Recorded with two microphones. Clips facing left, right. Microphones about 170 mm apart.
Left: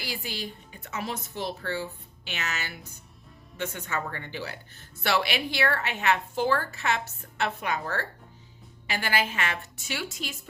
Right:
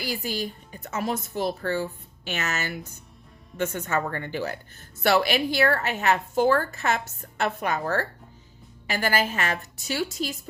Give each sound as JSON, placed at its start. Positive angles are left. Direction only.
{"t": 0.0, "sound": "a woman's voice", "side_deg": -45}